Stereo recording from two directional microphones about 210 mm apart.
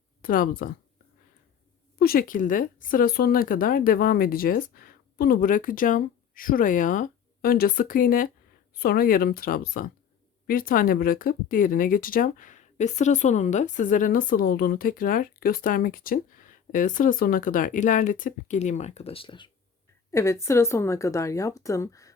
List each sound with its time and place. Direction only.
0.2 s speech: 40° left (ahead or behind)
2.0 s speech: 45° left (ahead or behind); by 19.5 s 25° left (ahead or behind)
20.1 s speech: 15° left (ahead or behind)